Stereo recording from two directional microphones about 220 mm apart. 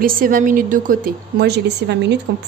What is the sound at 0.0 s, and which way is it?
A woman's voice, 40° right (ahead or behind).